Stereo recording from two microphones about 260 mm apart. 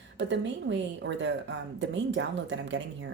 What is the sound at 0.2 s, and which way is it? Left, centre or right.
A woman's voice, right.